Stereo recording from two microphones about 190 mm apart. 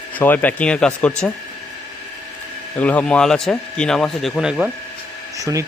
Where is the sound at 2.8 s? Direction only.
5° left (ahead or behind).